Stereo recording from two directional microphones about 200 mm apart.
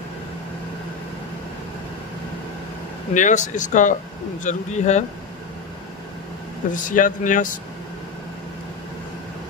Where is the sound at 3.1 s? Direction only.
40° left (ahead or behind).